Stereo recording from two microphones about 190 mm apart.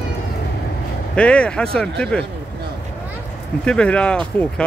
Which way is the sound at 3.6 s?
5° left (ahead or behind).